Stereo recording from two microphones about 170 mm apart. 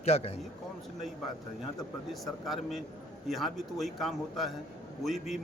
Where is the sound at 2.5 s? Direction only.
Centre (ahead or behind).